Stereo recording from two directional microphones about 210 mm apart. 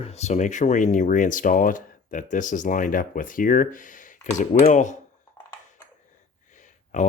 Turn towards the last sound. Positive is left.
turn(degrees=35)  # may be behind; listen again after turning